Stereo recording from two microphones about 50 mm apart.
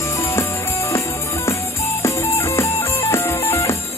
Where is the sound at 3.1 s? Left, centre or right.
Left.